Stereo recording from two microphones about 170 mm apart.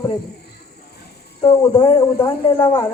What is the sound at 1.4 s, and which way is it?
Speech, 25° left (ahead or behind).